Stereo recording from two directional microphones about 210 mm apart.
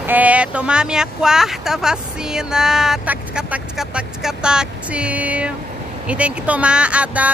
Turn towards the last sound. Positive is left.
turn(degrees=-5)  # may be behind; listen again after turning